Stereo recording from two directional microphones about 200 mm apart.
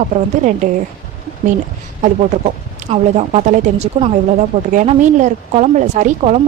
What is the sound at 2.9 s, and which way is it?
Speech, 35° right (ahead or behind).